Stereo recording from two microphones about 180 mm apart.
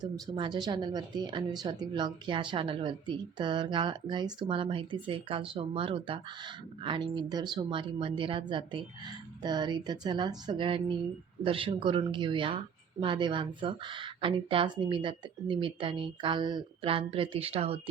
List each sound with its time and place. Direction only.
0.0 s speech: 25° right (ahead or behind)